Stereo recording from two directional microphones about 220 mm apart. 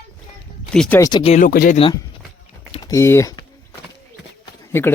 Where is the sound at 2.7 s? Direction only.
15° left (ahead or behind).